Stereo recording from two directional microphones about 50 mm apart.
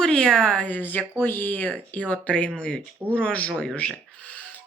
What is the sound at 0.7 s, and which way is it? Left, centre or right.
Speech, left.